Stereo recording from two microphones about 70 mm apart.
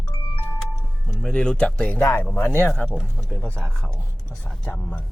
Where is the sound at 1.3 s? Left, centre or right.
Centre.